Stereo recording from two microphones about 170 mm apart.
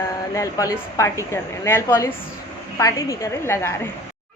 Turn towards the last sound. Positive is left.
turn(degrees=15)  # may be behind; listen again after turning